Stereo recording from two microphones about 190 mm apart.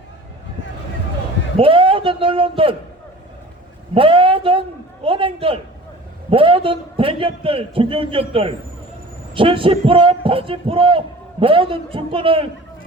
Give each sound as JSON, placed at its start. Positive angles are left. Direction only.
{"t": 1.5, "sound": "a man's voice", "side_deg": -30}
{"t": 3.9, "sound": "a man's voice", "side_deg": -30}